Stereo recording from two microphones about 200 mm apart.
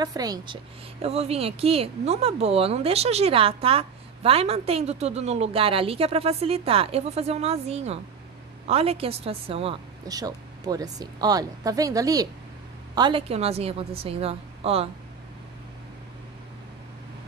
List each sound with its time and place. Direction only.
0.0 s a woman's voice: 20° right (ahead or behind)
1.0 s a woman's voice: 30° right (ahead or behind)